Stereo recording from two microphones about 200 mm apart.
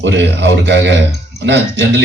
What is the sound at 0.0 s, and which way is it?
Speech, 65° right (ahead or behind).